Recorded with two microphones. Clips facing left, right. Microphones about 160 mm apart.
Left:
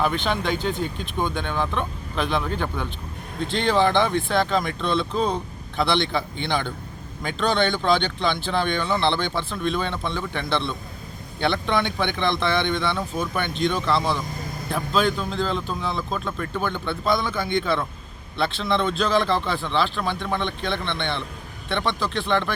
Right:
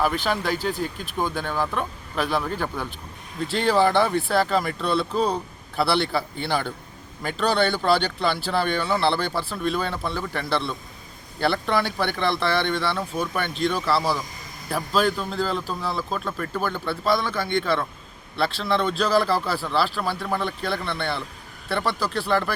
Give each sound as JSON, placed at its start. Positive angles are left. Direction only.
{"t": 0.0, "sound": "a man's voice", "side_deg": -5}